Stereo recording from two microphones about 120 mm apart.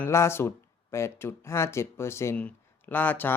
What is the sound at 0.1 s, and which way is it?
Speech, 20° left (ahead or behind).